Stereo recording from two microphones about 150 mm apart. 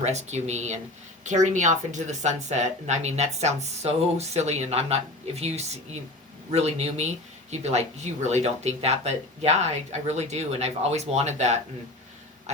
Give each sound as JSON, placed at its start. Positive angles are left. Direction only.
{"t": 0.0, "sound": "speech", "side_deg": -50}